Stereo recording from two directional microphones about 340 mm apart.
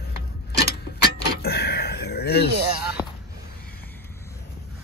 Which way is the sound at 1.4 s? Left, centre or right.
Left.